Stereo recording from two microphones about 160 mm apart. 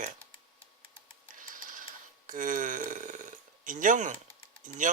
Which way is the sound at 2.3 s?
55° right (ahead or behind).